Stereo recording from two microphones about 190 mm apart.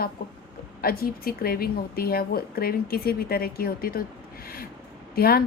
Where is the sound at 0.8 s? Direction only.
50° left (ahead or behind).